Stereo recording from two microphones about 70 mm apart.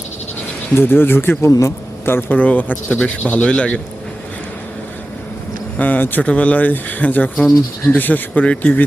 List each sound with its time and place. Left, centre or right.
0.8 s speech: left
1.5 s a man's voice: left
2.0 s speech: left
2.4 s speech: left
5.7 s speech: left